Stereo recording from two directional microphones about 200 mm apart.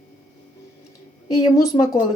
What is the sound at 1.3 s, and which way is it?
Speech, 20° left (ahead or behind).